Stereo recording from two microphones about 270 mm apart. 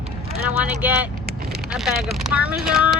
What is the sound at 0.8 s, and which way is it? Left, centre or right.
Speech, centre.